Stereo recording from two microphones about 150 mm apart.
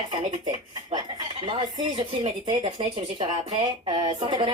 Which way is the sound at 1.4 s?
35° right (ahead or behind).